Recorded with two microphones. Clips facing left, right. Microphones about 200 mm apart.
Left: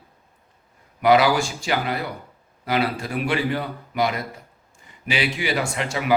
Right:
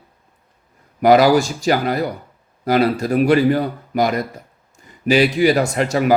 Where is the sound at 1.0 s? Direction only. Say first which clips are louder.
Right 5 dB; 40° right (ahead or behind).